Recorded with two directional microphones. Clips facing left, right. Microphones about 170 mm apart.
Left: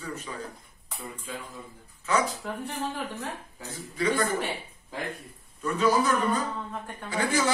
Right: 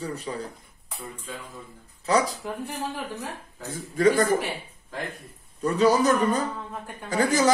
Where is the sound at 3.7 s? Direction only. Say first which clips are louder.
Right 7 dB; 45° right (ahead or behind).